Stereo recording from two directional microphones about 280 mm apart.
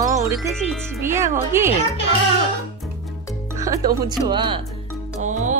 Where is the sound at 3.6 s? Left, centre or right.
Centre.